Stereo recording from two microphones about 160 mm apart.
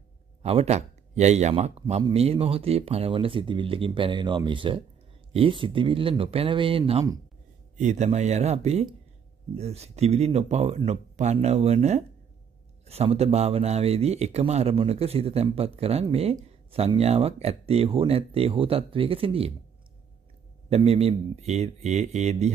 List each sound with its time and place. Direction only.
0.4 s a man's voice: 40° right (ahead or behind)
7.7 s a man's voice: 45° right (ahead or behind)
20.7 s speech: 40° right (ahead or behind)